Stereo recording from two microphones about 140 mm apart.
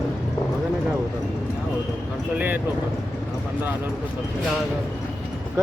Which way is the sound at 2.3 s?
10° right (ahead or behind).